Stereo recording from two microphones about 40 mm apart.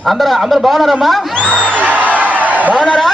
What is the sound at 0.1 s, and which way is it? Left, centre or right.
Speech, centre.